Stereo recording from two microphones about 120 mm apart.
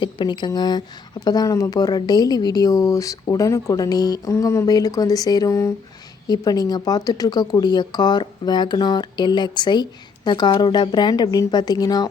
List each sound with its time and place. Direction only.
0.0 s speech: 40° left (ahead or behind)